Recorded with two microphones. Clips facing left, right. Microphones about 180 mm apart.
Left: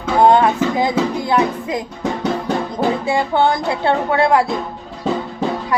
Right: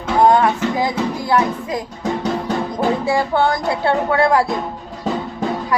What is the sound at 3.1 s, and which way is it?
Speech, 20° left (ahead or behind).